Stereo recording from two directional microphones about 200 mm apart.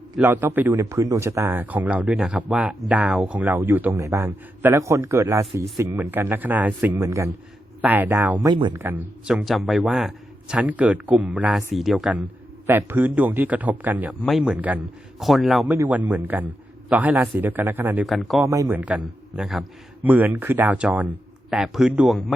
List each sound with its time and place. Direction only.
0.2 s speech: 10° right (ahead or behind)
8.4 s speech: 20° right (ahead or behind)
8.7 s a man's voice: 10° right (ahead or behind)
18.4 s speech: 15° right (ahead or behind)